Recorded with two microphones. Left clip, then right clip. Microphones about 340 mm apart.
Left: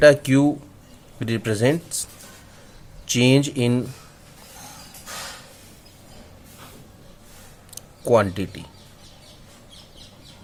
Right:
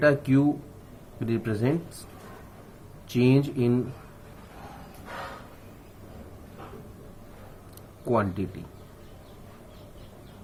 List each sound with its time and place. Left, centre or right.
0.0 s speech: left
3.1 s speech: left
7.8 s a sound: left